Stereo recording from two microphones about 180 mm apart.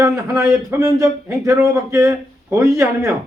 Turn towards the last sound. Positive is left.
turn(degrees=-15)  # may be behind; listen again after turning